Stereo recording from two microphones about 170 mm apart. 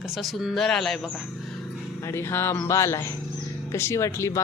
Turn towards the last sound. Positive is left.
turn(degrees=15)  # may be behind; listen again after turning